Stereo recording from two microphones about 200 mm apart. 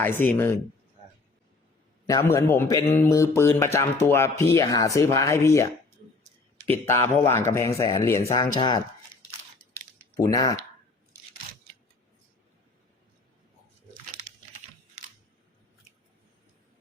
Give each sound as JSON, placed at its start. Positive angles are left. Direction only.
{"t": 0.0, "sound": "speech", "side_deg": 10}
{"t": 2.0, "sound": "speech", "side_deg": 15}
{"t": 6.7, "sound": "speech", "side_deg": 10}
{"t": 10.2, "sound": "speech", "side_deg": 15}